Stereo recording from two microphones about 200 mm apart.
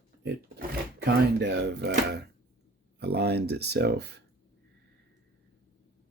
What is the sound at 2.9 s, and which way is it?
Speech, 55° right (ahead or behind).